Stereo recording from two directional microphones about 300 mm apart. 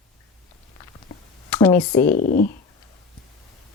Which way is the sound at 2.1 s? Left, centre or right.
Left.